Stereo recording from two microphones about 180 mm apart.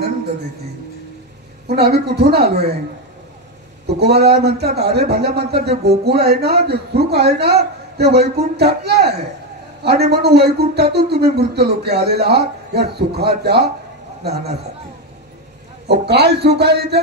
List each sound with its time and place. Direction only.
1.7 s speech: 60° right (ahead or behind)
3.8 s speech: 65° right (ahead or behind)
10.1 s speech: 65° right (ahead or behind)
15.9 s speech: 65° right (ahead or behind)